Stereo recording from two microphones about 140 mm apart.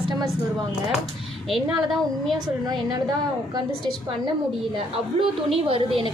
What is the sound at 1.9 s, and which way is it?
Speech, centre (ahead or behind).